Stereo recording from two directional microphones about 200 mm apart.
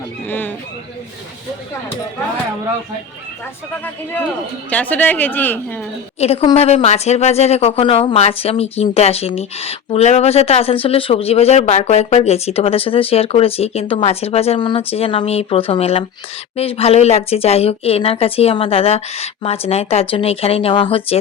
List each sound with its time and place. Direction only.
0.3 s a sound: 10° left (ahead or behind)
4.7 s speech: 5° left (ahead or behind)
6.1 s a woman's voice: 30° left (ahead or behind)